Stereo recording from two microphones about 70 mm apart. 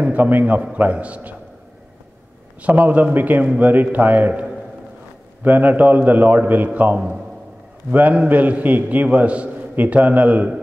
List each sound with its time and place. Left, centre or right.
0.0 s a man's voice: right
2.6 s a man's voice: right